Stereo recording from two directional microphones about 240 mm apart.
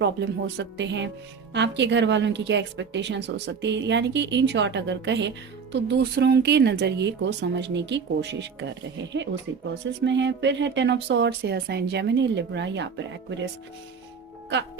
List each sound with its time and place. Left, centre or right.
0.0 s a woman's voice: right
9.8 s a woman's voice: right